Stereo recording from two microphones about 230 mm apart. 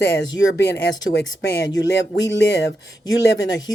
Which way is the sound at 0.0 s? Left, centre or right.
Left.